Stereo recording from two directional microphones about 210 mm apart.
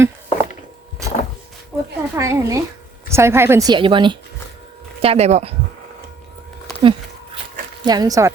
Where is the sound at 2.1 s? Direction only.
15° right (ahead or behind); by 5.5 s 30° right (ahead or behind).